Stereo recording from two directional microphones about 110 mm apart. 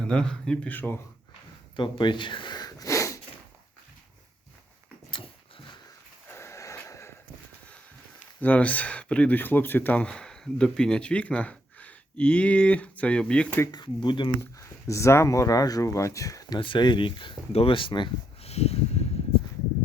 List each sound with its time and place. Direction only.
0.0 s speech: 5° left (ahead or behind)
1.7 s speech: 45° left (ahead or behind); by 3.2 s 30° left (ahead or behind)
6.3 s a sound: 25° left (ahead or behind)
8.4 s speech: 15° left (ahead or behind)
13.7 s speech: 40° left (ahead or behind)
14.6 s speech: 25° left (ahead or behind)
16.6 s speech: 50° left (ahead or behind)
18.4 s a sound: 70° left (ahead or behind)